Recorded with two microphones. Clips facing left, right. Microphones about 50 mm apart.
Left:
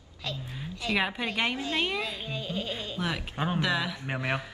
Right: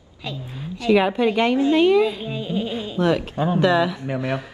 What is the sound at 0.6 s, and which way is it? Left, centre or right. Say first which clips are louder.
Chopping: right 11 dB; centre.